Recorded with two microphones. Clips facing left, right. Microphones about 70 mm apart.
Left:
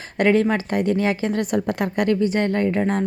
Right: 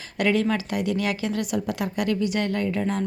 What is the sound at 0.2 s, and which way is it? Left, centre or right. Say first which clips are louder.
A woman's voice: left 5 dB; left.